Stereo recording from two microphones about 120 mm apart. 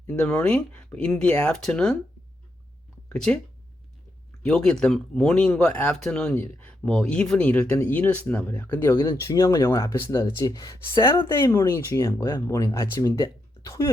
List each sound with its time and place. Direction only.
0.1 s speech: 10° left (ahead or behind)
3.1 s speech: 5° left (ahead or behind)
4.4 s speech: 5° left (ahead or behind); by 13.9 s 25° left (ahead or behind)